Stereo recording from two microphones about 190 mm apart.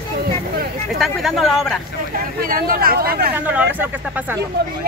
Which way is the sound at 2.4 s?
50° right (ahead or behind).